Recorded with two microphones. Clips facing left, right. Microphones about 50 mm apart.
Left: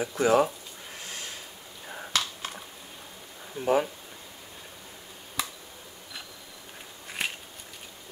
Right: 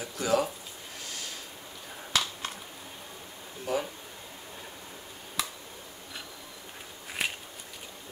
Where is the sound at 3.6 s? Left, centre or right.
Left.